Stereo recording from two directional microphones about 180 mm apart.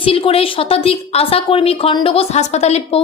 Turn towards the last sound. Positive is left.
turn(degrees=35)  # may be behind; listen again after turning